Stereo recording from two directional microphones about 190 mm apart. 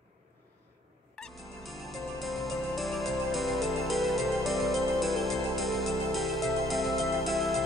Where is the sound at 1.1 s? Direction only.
Centre (ahead or behind).